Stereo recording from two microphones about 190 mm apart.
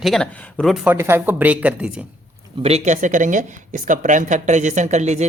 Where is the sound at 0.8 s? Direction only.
10° right (ahead or behind).